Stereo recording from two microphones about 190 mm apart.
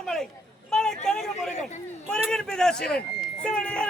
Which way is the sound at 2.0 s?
5° left (ahead or behind).